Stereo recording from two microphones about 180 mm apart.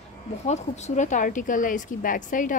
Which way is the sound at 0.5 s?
40° left (ahead or behind).